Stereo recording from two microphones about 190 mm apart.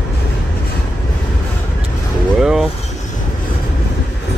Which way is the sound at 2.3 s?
5° right (ahead or behind).